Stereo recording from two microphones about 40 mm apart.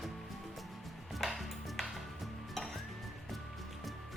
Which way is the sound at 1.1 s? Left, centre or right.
Centre.